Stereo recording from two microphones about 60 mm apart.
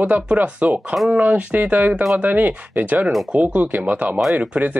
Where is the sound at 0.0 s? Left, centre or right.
Right.